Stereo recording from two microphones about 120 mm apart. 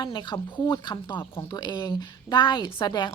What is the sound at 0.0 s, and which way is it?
Speech, 40° left (ahead or behind).